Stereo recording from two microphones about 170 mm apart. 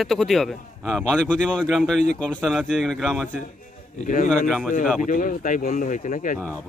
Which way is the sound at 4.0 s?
50° left (ahead or behind).